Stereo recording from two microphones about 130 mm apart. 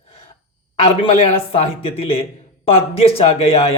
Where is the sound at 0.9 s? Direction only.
50° left (ahead or behind).